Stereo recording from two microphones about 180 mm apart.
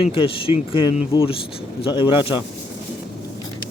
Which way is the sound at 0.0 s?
30° left (ahead or behind).